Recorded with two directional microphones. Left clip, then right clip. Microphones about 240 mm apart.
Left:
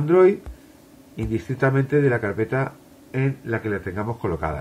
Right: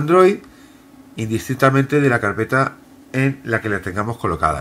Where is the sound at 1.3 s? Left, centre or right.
Centre.